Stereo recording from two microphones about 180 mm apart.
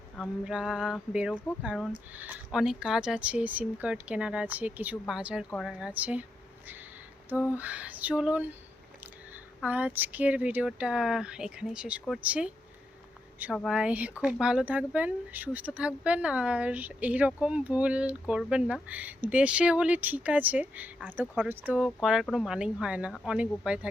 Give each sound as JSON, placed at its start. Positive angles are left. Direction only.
{"t": 0.2, "sound": "a sound", "side_deg": -5}
{"t": 2.1, "sound": "speech", "side_deg": -10}
{"t": 7.5, "sound": "speech", "side_deg": -10}
{"t": 13.7, "sound": "speech", "side_deg": -5}